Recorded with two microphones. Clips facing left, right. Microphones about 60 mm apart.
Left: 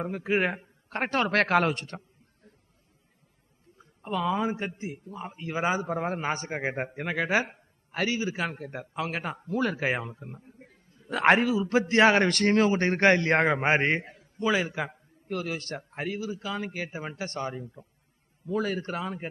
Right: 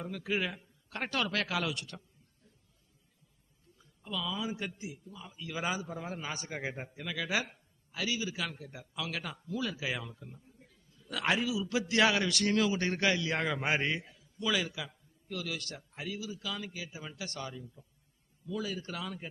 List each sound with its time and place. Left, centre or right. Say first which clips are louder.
0.0 s a man's voice: left 8 dB; left
1.3 s a man's voice: left 10 dB; left
3.8 s a man's voice: left 9 dB; left
6.7 s a man's voice: left 9 dB; left